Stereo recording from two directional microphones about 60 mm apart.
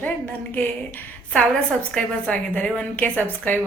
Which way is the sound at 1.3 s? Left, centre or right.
Centre.